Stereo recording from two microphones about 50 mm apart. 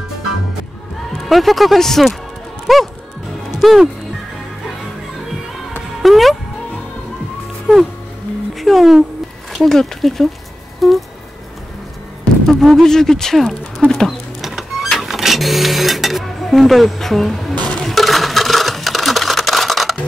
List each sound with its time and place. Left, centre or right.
1.1 s speech: centre
6.0 s speech: centre
7.7 s speech: centre
10.8 s a sound: centre
12.4 s speech: centre
14.4 s music: centre
14.9 s speech: centre
17.6 s a sound: left
17.8 s a sound: centre